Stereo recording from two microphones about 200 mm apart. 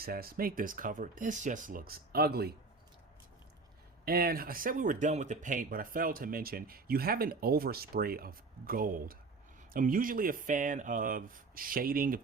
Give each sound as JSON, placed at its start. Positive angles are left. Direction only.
{"t": 0.0, "sound": "speech", "side_deg": -50}
{"t": 4.0, "sound": "speech", "side_deg": -50}